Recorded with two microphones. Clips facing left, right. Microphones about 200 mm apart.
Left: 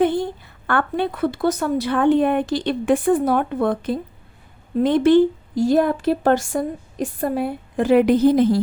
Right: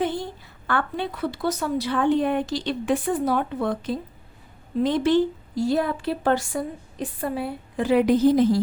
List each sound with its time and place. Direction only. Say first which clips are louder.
0.0 s a woman's voice: left 7 dB; 55° left (ahead or behind)